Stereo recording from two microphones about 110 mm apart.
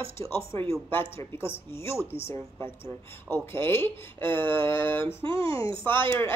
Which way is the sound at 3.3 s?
20° left (ahead or behind).